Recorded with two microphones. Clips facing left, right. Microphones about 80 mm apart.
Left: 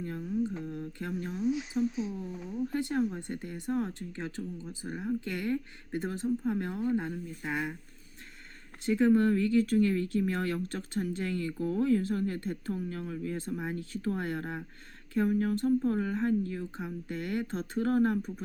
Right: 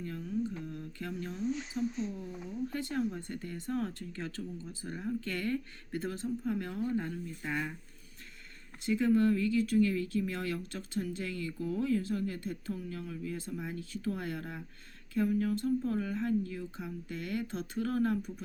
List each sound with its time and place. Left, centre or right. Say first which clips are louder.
0.3 s mantra: left 3 dB; left
1.3 s speech: left 5 dB; centre
2.5 s speech: left 5 dB; centre
8.9 s speech: left 3 dB; left